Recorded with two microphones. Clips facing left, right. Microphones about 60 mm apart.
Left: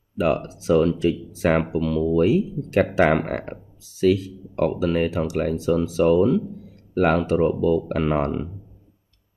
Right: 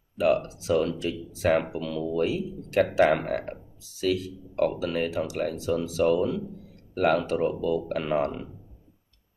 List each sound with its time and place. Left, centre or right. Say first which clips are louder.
0.2 s speech: left 1 dB; left